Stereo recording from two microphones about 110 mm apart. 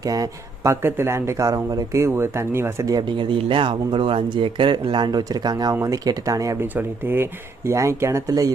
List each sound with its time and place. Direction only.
0.0 s speech: 35° right (ahead or behind)
2.8 s speech: 40° right (ahead or behind)
6.7 s speech: 20° right (ahead or behind)